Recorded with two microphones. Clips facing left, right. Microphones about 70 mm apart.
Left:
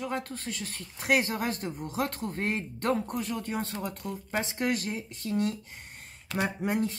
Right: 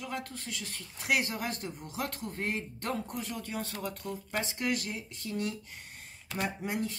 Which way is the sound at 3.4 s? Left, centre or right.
Left.